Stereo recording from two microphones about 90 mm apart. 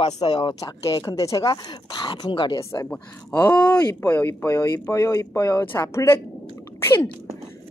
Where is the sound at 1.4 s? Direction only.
55° left (ahead or behind).